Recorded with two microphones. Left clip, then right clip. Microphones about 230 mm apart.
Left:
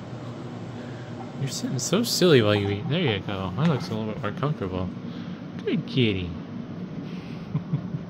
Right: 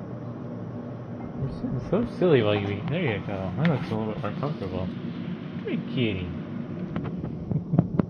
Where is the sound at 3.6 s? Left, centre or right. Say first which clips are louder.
Even; right.